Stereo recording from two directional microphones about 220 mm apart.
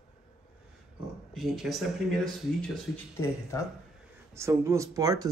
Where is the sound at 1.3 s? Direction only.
Centre (ahead or behind).